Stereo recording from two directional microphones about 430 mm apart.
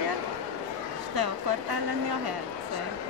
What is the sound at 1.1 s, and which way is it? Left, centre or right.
Speech, right.